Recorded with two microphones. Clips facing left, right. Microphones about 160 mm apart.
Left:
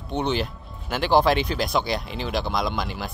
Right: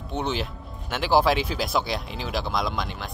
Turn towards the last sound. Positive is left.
turn(degrees=0)  # may be behind; listen again after turning